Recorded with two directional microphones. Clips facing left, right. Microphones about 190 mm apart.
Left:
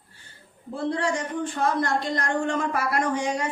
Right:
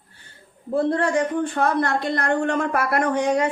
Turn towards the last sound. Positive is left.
turn(degrees=-60)  # may be behind; listen again after turning